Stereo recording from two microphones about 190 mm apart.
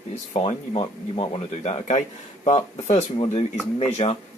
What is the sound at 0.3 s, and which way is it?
Speech, 30° left (ahead or behind).